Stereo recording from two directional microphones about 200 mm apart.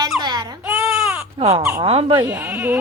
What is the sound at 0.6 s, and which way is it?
Baby cry, 5° right (ahead or behind).